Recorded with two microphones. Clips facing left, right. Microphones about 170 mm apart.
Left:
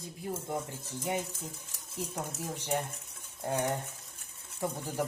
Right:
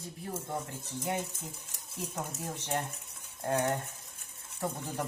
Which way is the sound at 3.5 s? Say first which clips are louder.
Right 2 dB; 15° left (ahead or behind).